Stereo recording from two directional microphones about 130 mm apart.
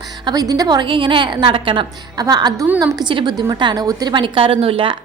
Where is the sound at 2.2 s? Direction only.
30° right (ahead or behind).